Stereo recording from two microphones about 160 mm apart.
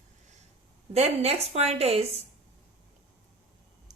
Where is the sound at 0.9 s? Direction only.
40° right (ahead or behind).